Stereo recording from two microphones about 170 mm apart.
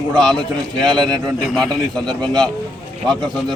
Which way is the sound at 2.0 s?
25° right (ahead or behind).